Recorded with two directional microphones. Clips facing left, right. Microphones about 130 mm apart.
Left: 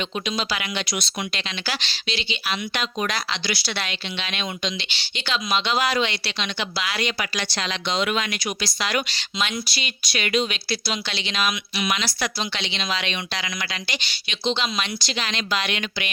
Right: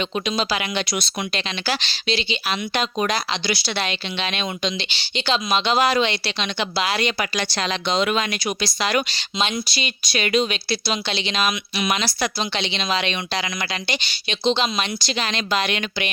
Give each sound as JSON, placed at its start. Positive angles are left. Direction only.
{"t": 0.3, "sound": "speech", "side_deg": -30}
{"t": 7.5, "sound": "speech", "side_deg": -45}
{"t": 12.2, "sound": "speech", "side_deg": -25}
{"t": 15.2, "sound": "a woman's voice", "side_deg": -40}